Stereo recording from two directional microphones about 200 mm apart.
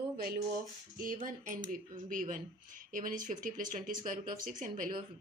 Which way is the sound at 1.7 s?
40° right (ahead or behind).